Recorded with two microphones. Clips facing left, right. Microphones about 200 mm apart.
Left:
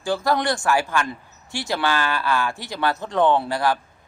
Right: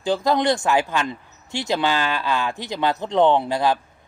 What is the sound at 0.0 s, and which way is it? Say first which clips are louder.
Speech: right 2 dB; 20° right (ahead or behind).